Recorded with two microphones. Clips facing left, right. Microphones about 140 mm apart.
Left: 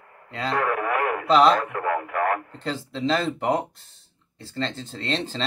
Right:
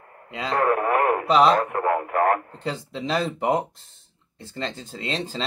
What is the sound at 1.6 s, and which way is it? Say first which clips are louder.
Speech: right 3 dB; 40° right (ahead or behind).